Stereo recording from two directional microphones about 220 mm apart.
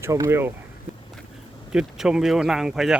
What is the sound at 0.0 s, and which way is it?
Speech, 15° right (ahead or behind).